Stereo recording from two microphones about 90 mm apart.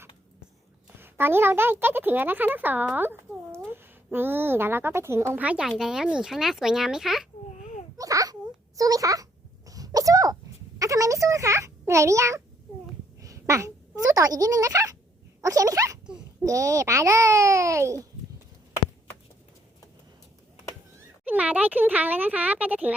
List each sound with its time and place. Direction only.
0.9 s speech: 25° right (ahead or behind)
5.4 s speech: 15° right (ahead or behind)
5.6 s speech: 5° right (ahead or behind)
7.9 s a sound: 40° right (ahead or behind)
9.6 s sneeze: 40° right (ahead or behind)
10.8 s a child's voice: 40° right (ahead or behind)
13.2 s a sound: 35° right (ahead or behind)
15.4 s a child's voice: 40° right (ahead or behind)
21.2 s speech: 15° right (ahead or behind)